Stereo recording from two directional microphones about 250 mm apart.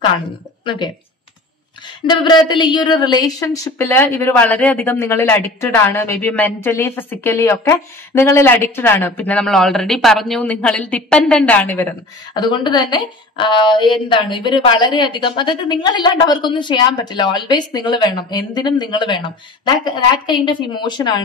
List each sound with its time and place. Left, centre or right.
2.0 s a woman's voice: centre